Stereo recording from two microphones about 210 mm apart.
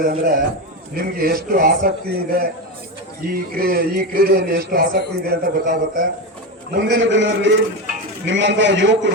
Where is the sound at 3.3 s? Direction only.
45° right (ahead or behind).